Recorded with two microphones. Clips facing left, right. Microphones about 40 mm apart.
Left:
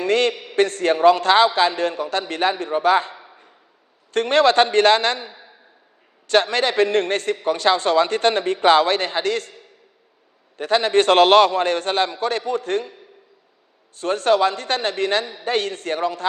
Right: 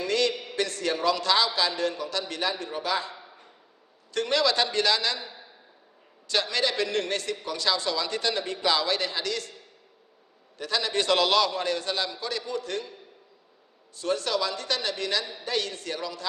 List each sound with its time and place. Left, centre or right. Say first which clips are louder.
0.0 s a man's voice: left 7 dB; left
3.2 s a sound: left 3 dB; left
4.1 s a man's voice: left 9 dB; left
10.6 s a man's voice: left 10 dB; left